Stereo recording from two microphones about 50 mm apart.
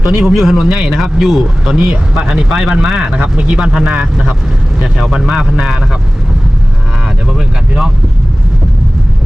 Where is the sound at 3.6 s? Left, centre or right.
Centre.